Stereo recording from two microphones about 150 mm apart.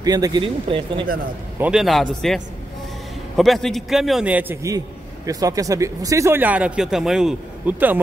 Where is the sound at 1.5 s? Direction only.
5° right (ahead or behind).